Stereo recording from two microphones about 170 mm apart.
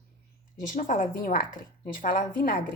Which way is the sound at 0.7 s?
55° left (ahead or behind).